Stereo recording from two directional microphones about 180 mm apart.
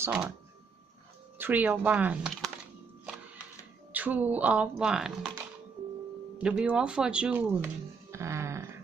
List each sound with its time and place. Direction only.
0.0 s speech: 10° right (ahead or behind)
1.4 s speech: 10° right (ahead or behind)
3.9 s speech: 10° right (ahead or behind)
6.4 s speech: 5° right (ahead or behind)
8.1 s a sound: 15° right (ahead or behind)